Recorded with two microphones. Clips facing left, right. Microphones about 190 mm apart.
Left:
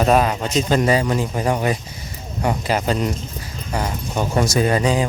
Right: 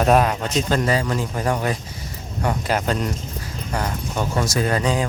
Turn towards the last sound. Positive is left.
turn(degrees=10)  # may be behind; listen again after turning